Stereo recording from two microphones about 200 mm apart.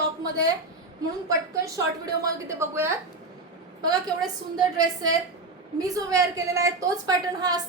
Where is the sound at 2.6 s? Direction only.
15° right (ahead or behind).